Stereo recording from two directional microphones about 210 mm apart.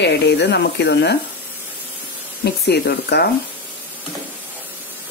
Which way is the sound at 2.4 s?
50° left (ahead or behind).